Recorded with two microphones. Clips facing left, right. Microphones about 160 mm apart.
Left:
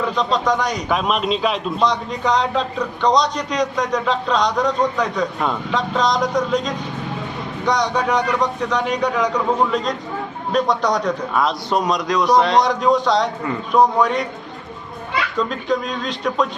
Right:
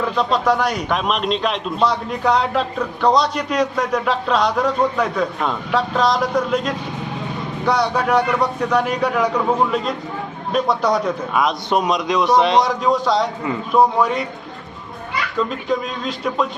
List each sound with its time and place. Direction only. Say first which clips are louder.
0.0 s a man's voice: right 1 dB; 5° right (ahead or behind)
11.4 s speech: right 2 dB; 20° right (ahead or behind)
12.6 s a man's voice: left 1 dB; centre (ahead or behind)
15.4 s a man's voice: right 1 dB; centre (ahead or behind)